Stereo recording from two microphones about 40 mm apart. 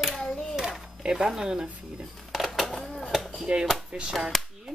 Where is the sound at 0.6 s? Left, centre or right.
Centre.